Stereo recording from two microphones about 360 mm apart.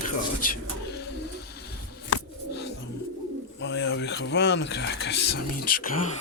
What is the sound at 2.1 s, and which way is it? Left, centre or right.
Pigeon, left.